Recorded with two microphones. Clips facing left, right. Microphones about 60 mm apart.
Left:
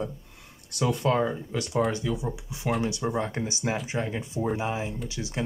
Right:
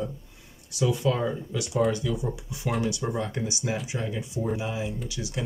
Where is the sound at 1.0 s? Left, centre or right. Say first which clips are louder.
Left 1 dB; left.